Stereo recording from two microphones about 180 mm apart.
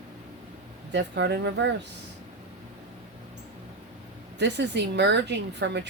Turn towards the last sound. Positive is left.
turn(degrees=-75)  # may be behind; listen again after turning